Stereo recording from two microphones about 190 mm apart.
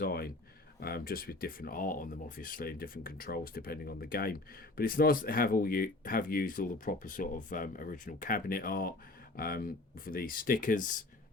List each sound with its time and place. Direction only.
0.0 s speech: 55° left (ahead or behind)